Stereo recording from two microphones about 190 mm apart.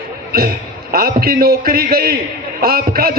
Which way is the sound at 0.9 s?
50° right (ahead or behind).